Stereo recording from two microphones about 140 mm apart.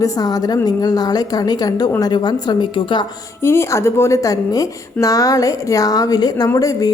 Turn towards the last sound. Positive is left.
turn(degrees=25)  # may be behind; listen again after turning